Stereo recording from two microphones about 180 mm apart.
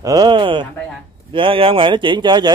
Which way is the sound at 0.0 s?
20° right (ahead or behind).